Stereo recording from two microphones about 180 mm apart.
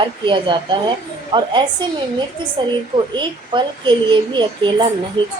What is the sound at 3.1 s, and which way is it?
Speech, 25° right (ahead or behind).